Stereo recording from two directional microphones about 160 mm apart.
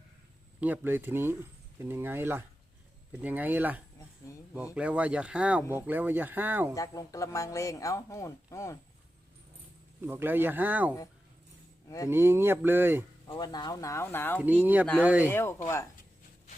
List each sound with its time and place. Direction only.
0.6 s speech: 10° right (ahead or behind)
4.3 s speech: 20° left (ahead or behind)
4.7 s speech: 10° right (ahead or behind)
6.7 s speech: 20° left (ahead or behind)
10.0 s speech: 15° right (ahead or behind)
12.0 s speech: 15° right (ahead or behind)
13.2 s speech: 25° left (ahead or behind)
14.3 s speech: 10° right (ahead or behind)
15.3 s speech: 15° left (ahead or behind)